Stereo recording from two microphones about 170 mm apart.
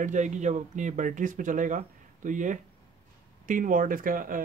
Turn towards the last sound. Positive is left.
turn(degrees=-55)  # may be behind; listen again after turning